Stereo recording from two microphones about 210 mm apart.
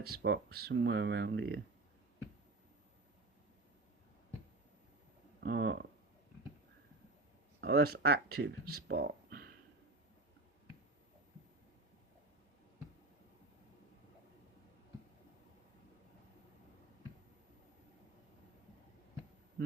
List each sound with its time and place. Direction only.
0.0 s speech: 50° right (ahead or behind)
5.4 s speech: 55° right (ahead or behind)
7.6 s speech: 50° right (ahead or behind)